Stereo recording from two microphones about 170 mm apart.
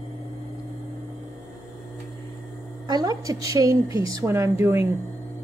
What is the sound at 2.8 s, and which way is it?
A woman's voice, 20° right (ahead or behind).